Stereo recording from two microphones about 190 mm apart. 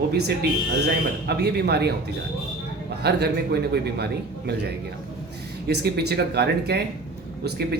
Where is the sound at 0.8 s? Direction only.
60° right (ahead or behind).